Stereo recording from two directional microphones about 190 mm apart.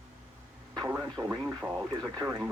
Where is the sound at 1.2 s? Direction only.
15° right (ahead or behind).